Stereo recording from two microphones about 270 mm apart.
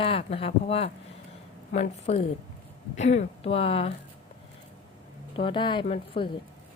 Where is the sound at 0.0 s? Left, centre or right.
Centre.